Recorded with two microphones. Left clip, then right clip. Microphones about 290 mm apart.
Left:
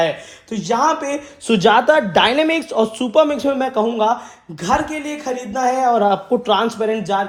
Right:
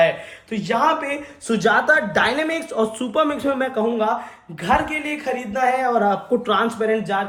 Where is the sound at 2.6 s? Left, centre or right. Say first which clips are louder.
Left 4 dB; centre.